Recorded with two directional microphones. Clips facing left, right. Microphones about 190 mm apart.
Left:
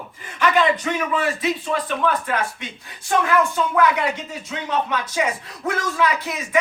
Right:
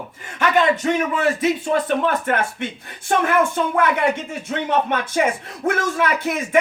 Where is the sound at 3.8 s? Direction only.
55° right (ahead or behind).